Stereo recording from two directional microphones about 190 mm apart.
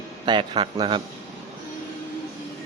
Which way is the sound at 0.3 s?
25° right (ahead or behind).